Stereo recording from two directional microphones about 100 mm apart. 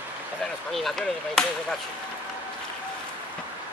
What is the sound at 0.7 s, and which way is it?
Speech, centre (ahead or behind).